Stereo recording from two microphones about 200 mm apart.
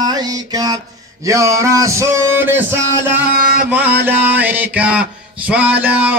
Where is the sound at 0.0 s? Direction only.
20° right (ahead or behind).